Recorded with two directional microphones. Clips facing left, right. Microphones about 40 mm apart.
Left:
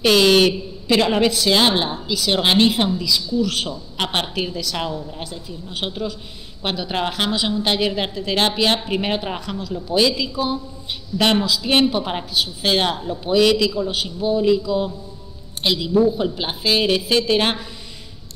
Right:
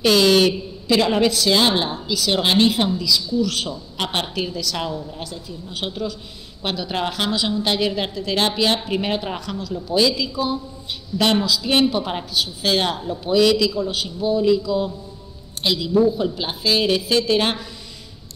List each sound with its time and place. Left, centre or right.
0.0 s a woman's voice: left